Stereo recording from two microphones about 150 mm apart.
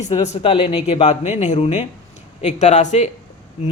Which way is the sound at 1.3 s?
50° left (ahead or behind).